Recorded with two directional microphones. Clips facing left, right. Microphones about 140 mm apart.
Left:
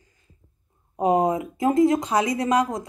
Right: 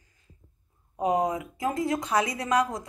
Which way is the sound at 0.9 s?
25° left (ahead or behind).